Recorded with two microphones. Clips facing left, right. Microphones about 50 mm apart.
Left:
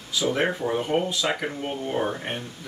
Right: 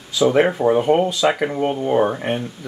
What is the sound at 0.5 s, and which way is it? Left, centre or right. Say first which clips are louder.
Speech: right 9 dB; right.